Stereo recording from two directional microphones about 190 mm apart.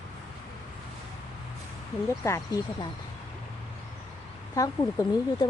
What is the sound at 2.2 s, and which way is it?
Speech, 15° left (ahead or behind).